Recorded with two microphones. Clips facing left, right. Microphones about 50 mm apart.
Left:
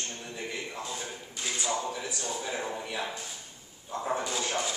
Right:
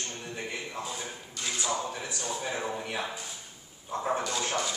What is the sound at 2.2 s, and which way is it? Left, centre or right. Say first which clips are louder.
Speech: right 2 dB; right.